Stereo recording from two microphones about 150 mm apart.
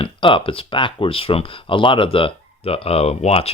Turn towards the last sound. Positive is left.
turn(degrees=40)  # may be behind; listen again after turning